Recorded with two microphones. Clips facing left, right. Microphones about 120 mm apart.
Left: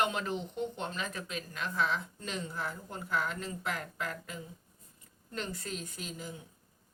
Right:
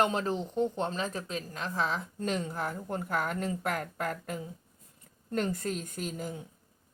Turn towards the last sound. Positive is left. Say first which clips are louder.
# right 6 dB
turn(degrees=-50)  # may be behind; listen again after turning